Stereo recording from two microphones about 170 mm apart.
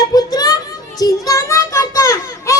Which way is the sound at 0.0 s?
20° left (ahead or behind).